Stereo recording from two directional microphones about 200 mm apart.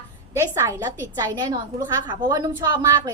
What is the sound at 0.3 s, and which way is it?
A woman's voice, 15° right (ahead or behind).